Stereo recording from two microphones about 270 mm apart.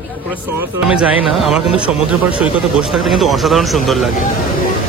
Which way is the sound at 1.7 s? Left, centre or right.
Left.